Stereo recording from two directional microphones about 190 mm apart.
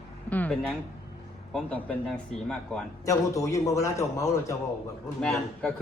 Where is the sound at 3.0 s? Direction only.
15° left (ahead or behind).